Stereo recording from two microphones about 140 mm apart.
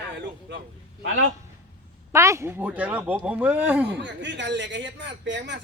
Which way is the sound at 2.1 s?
20° right (ahead or behind).